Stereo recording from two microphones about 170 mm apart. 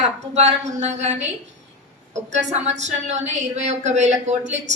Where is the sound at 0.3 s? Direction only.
40° right (ahead or behind).